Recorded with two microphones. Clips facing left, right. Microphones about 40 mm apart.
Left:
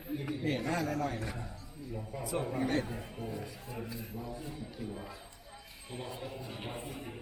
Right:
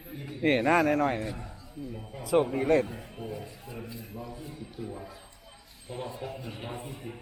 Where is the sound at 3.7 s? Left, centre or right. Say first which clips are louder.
Right 1 dB; centre.